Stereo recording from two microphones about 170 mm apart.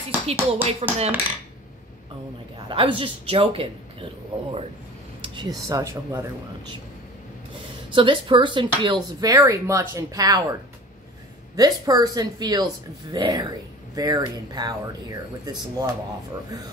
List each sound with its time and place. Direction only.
0.3 s a man's voice: 40° right (ahead or behind)
2.7 s a man's voice: 30° right (ahead or behind)
7.9 s speech: 30° right (ahead or behind)
11.5 s speech: 20° right (ahead or behind)